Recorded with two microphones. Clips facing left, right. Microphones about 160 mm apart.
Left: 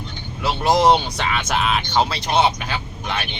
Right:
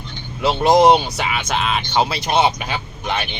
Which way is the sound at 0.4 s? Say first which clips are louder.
Right 4 dB; 20° right (ahead or behind).